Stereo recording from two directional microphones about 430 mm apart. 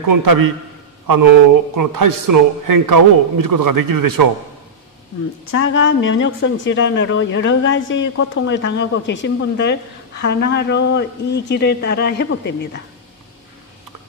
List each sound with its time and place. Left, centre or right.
0.0 s a man's voice: right
5.4 s a woman's voice: left